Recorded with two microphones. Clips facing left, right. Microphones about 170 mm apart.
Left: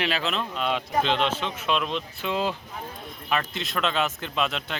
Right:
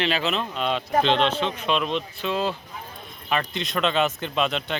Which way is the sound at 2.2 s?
15° left (ahead or behind).